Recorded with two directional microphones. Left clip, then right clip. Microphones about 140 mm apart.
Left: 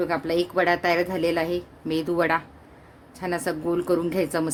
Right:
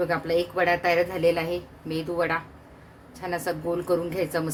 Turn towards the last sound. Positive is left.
turn(degrees=50)  # may be behind; listen again after turning